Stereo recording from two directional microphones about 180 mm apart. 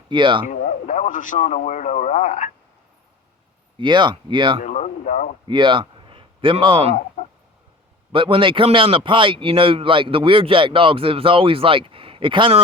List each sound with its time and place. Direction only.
0.1 s a man's voice: 25° right (ahead or behind)
0.4 s a man's voice: 45° left (ahead or behind)
3.8 s a man's voice: 25° right (ahead or behind)
4.6 s a sound: 40° left (ahead or behind)
5.5 s speech: 25° right (ahead or behind)
8.1 s a man's voice: 30° right (ahead or behind)